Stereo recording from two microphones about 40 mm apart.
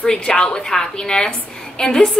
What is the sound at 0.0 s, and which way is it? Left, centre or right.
A woman's voice, centre.